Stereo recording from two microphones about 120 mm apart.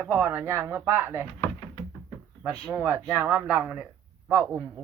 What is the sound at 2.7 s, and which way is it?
Speech, 15° right (ahead or behind).